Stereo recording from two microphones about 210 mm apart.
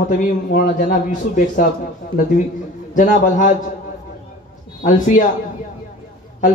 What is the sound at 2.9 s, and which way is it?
Speech, 40° left (ahead or behind).